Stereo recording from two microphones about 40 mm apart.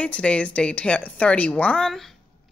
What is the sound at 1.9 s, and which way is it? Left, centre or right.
Speech, centre.